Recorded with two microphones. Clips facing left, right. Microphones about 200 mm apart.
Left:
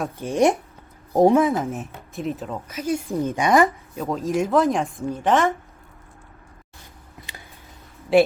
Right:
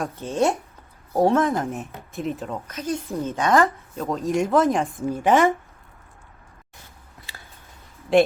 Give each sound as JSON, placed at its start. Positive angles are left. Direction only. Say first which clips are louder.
{"t": 0.2, "sound": "speech", "louder": "left 4 dB", "side_deg": 15}
{"t": 1.5, "sound": "speech", "louder": "left 1 dB", "side_deg": 0}
{"t": 4.0, "sound": "speech", "louder": "even", "side_deg": 0}
{"t": 7.3, "sound": "a sound", "louder": "left 2 dB", "side_deg": 20}
{"t": 8.1, "sound": "speech", "louder": "left 1 dB", "side_deg": 5}